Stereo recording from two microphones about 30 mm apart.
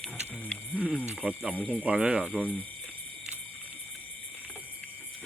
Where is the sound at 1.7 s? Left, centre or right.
Right.